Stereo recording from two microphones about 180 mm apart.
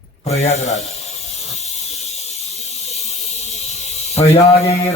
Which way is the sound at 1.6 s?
35° left (ahead or behind).